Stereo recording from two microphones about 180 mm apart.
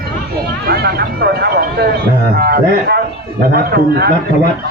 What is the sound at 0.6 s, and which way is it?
Speech, 60° right (ahead or behind).